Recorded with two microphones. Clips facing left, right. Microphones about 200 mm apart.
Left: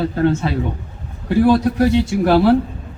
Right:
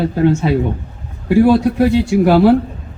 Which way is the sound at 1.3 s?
5° right (ahead or behind).